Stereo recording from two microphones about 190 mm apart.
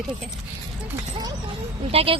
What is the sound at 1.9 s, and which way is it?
Speech, 30° right (ahead or behind).